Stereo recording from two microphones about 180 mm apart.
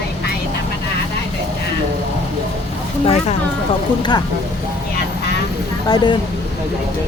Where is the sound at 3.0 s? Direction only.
35° left (ahead or behind).